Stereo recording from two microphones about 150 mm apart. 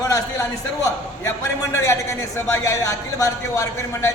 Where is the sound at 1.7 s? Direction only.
20° left (ahead or behind).